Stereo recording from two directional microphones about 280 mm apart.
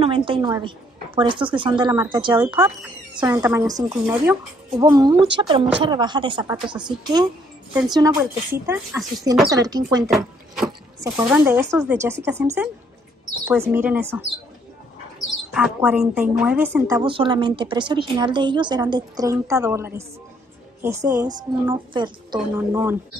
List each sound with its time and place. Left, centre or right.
0.0 s a woman's voice: centre
10.1 s vehicle: centre
11.1 s a woman's voice: centre
15.5 s a woman's voice: centre